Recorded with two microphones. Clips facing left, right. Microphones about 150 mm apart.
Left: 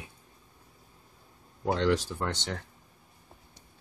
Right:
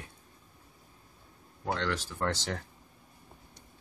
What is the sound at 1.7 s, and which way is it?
Speech, 15° left (ahead or behind).